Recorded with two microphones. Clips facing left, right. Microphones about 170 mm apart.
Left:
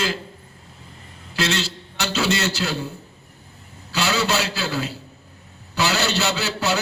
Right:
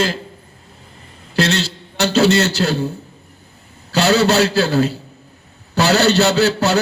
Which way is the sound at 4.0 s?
70° right (ahead or behind).